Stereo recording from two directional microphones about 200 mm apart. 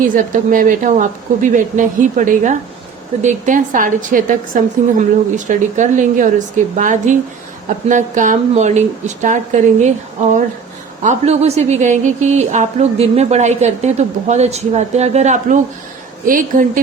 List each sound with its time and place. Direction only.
0.0 s a woman's voice: 45° right (ahead or behind)